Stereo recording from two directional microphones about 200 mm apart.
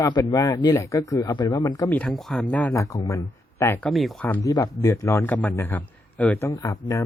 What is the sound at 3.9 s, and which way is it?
Speech, centre (ahead or behind).